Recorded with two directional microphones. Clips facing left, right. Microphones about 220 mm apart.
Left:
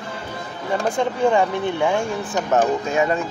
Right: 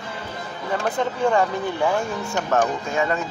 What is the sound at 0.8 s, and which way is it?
Speech, 15° left (ahead or behind).